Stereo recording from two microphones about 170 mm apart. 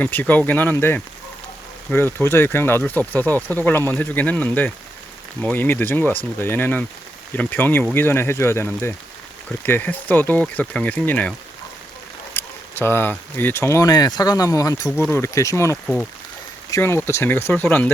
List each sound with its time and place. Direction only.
0.0 s speech: 10° left (ahead or behind)